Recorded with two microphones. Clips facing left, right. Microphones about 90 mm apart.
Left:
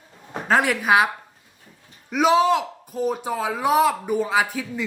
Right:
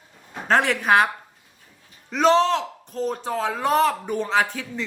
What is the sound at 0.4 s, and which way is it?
A woman's voice, 5° left (ahead or behind).